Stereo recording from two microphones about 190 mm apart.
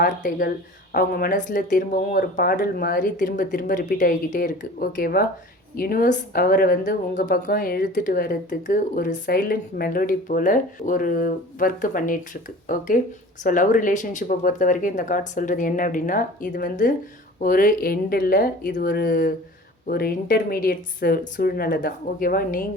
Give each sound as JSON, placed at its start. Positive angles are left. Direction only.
{"t": 0.0, "sound": "a woman's voice", "side_deg": 50}